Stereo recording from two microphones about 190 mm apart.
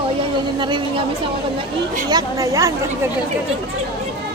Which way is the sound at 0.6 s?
25° right (ahead or behind).